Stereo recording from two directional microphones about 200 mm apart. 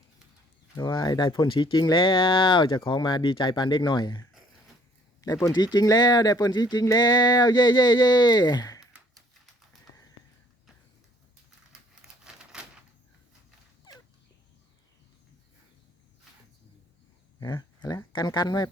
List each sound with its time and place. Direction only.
0.8 s speech: 20° left (ahead or behind)
5.2 s speech: 15° left (ahead or behind)
11.7 s crumpling: 5° right (ahead or behind)
17.4 s speech: 20° left (ahead or behind)